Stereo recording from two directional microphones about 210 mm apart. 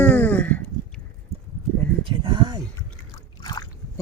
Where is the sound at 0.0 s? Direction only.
10° left (ahead or behind).